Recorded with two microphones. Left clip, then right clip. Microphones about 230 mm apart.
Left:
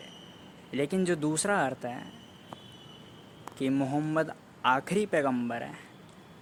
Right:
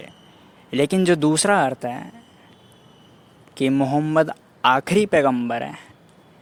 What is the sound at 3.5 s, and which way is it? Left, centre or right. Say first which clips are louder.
A man's voice: right 10 dB; right.